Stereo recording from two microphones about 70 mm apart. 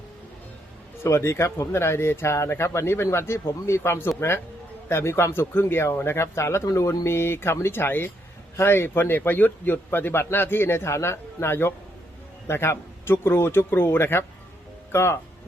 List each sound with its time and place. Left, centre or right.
1.0 s speech: left